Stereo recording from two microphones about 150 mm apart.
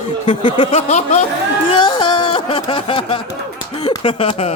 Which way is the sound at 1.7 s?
35° left (ahead or behind).